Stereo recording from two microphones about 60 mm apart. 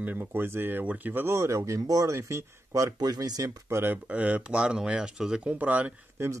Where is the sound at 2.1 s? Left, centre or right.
Right.